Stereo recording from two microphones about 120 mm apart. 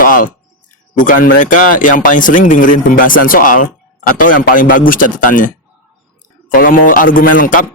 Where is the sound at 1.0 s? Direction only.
90° left.